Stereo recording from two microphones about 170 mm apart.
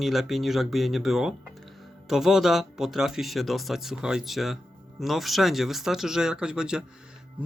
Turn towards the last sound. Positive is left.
turn(degrees=-5)  # may be behind; listen again after turning